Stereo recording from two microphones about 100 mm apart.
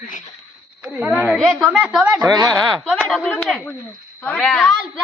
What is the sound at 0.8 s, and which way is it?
Speech, 10° right (ahead or behind).